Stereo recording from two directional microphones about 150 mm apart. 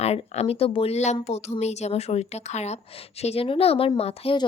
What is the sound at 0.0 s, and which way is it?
A woman's voice, 45° left (ahead or behind).